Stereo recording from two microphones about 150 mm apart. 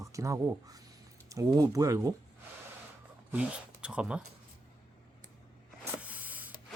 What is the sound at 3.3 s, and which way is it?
Speech, 10° right (ahead or behind).